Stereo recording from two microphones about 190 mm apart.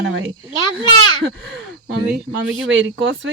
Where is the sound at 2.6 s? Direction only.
80° right.